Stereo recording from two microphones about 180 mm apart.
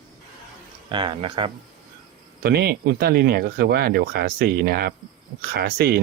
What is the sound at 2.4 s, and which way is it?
Speech, 65° right (ahead or behind).